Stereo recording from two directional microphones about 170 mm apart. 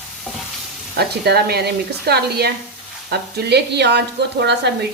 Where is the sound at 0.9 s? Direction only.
70° right (ahead or behind).